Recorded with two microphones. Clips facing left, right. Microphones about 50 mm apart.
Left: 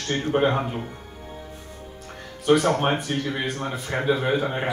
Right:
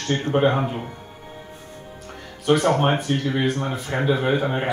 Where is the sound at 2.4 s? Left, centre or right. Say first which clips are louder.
Right 1 dB; centre.